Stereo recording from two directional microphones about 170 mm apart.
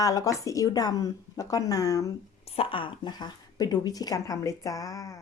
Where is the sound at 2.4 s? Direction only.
35° left (ahead or behind).